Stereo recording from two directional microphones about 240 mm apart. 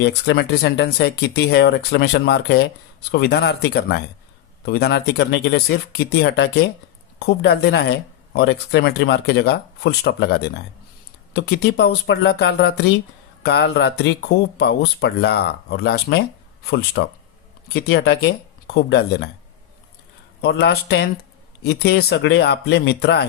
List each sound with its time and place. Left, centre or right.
0.0 s speech: left
20.4 s speech: left